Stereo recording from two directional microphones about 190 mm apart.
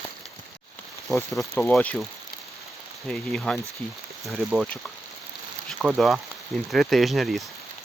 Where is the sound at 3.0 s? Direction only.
5° left (ahead or behind).